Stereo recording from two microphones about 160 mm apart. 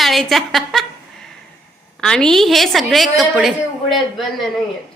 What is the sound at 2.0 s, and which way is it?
A woman's voice, 5° left (ahead or behind).